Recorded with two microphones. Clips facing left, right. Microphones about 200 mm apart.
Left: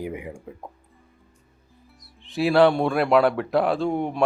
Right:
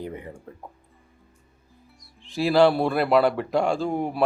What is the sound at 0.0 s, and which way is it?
Music, 10° left (ahead or behind).